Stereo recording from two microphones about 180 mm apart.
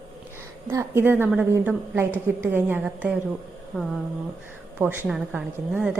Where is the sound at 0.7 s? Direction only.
15° right (ahead or behind).